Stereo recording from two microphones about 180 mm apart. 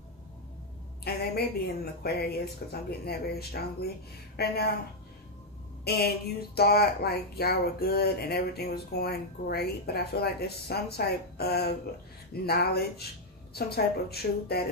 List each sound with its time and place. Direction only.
1.0 s speech: 60° left (ahead or behind)
5.9 s speech: 60° left (ahead or behind)